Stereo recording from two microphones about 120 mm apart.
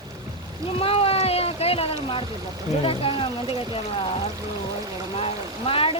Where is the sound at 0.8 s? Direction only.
55° left (ahead or behind).